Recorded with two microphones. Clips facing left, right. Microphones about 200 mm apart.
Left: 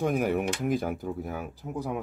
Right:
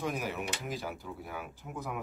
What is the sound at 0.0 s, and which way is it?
Speech, 55° left (ahead or behind).